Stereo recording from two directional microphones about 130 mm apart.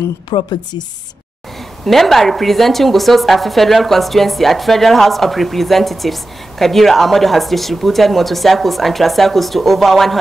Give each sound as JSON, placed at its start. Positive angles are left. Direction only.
{"t": 0.3, "sound": "speech", "side_deg": 35}
{"t": 1.9, "sound": "a woman's voice", "side_deg": 0}